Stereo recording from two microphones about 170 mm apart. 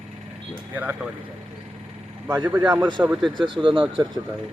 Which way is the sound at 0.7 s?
10° right (ahead or behind).